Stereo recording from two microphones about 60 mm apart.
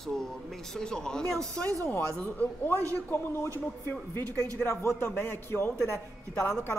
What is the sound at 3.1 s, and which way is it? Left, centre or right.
Speech, left.